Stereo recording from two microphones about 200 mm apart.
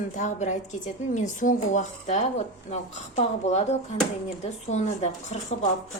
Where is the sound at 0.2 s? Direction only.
35° left (ahead or behind).